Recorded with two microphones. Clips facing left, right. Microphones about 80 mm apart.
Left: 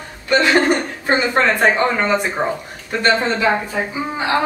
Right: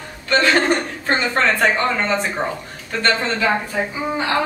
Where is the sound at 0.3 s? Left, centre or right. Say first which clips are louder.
Left 2 dB; centre.